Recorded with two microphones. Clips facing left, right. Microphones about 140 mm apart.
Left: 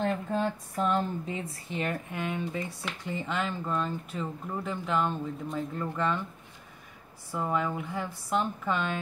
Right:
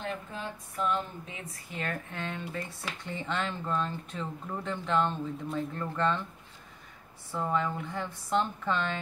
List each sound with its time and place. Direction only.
0.0 s speech: 40° left (ahead or behind); by 6.2 s 5° left (ahead or behind)
7.3 s speech: 10° left (ahead or behind)